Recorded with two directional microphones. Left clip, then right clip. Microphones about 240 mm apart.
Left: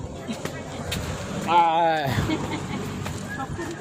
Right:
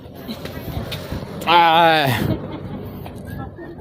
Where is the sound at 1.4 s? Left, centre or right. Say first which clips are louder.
Right 6 dB; right.